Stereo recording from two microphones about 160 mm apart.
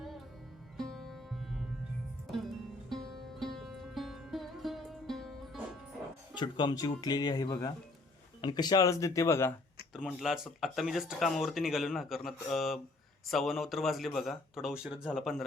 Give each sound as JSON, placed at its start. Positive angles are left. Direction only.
{"t": 0.8, "sound": "sitar", "side_deg": 0}
{"t": 2.2, "sound": "music", "side_deg": 0}
{"t": 6.3, "sound": "speech", "side_deg": 30}
{"t": 9.9, "sound": "speech", "side_deg": -5}